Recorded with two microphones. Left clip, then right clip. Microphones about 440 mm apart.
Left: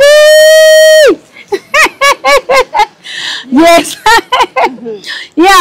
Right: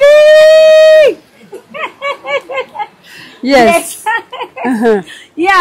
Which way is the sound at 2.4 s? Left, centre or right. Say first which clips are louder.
Left 11 dB; left.